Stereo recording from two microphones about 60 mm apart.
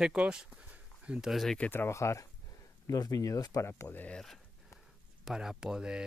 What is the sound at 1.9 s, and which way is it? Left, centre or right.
Speech, left.